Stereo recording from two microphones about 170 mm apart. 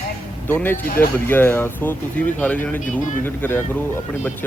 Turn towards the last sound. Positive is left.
turn(degrees=10)  # may be behind; listen again after turning